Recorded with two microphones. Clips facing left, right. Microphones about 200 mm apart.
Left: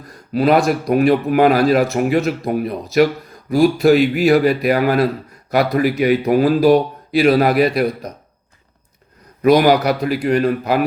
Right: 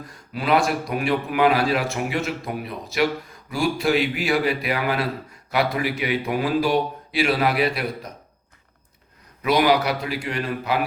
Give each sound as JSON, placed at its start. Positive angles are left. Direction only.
{"t": 0.3, "sound": "a man's voice", "side_deg": 40}
{"t": 9.4, "sound": "a man's voice", "side_deg": 45}